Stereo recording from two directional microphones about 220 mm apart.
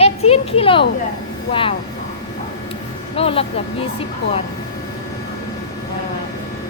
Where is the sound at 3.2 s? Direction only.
25° left (ahead or behind).